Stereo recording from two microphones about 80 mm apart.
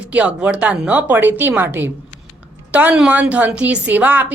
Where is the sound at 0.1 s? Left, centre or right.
Centre.